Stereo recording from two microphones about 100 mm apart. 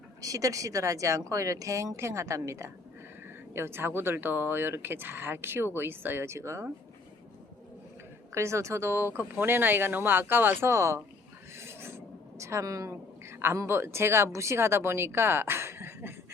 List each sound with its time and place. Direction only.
0.2 s speech: 35° right (ahead or behind)
8.3 s speech: 25° right (ahead or behind)